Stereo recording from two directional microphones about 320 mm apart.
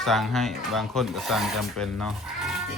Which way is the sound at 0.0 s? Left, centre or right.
Centre.